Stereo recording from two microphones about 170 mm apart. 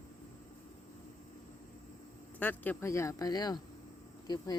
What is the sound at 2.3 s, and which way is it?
Speech, 10° left (ahead or behind).